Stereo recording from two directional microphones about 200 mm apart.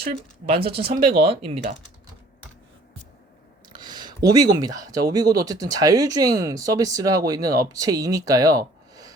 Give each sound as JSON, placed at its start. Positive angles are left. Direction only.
{"t": 0.0, "sound": "speech", "side_deg": -30}
{"t": 0.9, "sound": "speech", "side_deg": -50}
{"t": 1.2, "sound": "speech", "side_deg": -30}
{"t": 3.7, "sound": "speech", "side_deg": -20}